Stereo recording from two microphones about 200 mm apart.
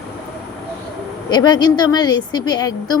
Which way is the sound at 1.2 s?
20° left (ahead or behind).